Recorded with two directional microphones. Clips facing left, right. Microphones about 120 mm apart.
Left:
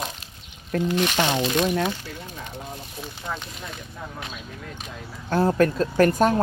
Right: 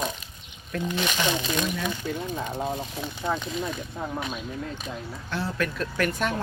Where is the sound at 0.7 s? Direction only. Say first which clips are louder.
Left 6 dB; 40° left (ahead or behind).